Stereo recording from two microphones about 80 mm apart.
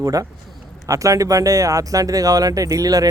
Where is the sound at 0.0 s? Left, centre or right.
Right.